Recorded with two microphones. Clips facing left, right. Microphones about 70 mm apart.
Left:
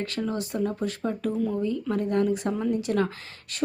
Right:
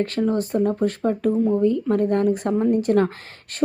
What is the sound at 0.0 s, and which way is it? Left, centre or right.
Speech, right.